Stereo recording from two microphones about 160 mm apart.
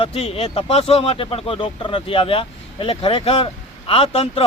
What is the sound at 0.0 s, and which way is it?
Speech, 35° left (ahead or behind).